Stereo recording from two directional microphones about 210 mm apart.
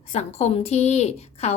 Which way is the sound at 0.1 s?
30° left (ahead or behind).